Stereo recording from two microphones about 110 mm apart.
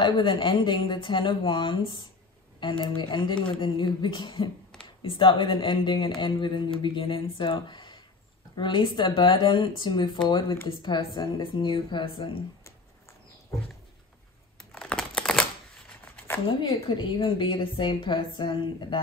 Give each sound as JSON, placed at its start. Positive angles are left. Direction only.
{"t": 0.0, "sound": "speech", "side_deg": 50}
{"t": 14.6, "sound": "crumpling", "side_deg": 5}
{"t": 16.7, "sound": "speech", "side_deg": 55}